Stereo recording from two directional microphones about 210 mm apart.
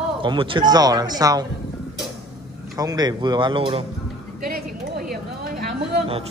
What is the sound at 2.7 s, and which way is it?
Speech, 20° right (ahead or behind).